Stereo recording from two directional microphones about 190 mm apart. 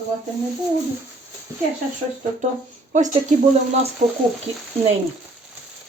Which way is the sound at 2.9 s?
40° right (ahead or behind).